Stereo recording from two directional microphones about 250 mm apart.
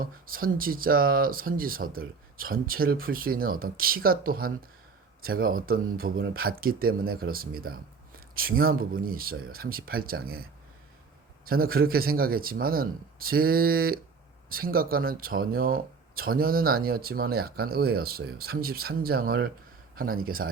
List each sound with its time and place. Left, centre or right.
0.0 s speech: right